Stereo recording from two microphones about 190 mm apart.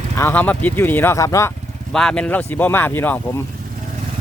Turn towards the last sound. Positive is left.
turn(degrees=10)  # may be behind; listen again after turning